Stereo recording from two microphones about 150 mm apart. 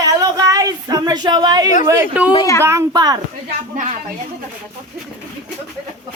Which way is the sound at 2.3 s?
20° left (ahead or behind).